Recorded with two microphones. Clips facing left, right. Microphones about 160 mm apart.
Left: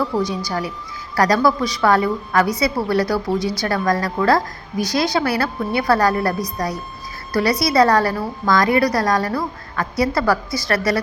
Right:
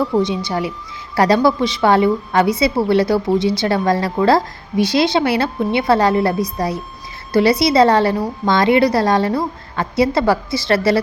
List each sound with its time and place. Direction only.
0.2 s a woman's voice: 25° right (ahead or behind)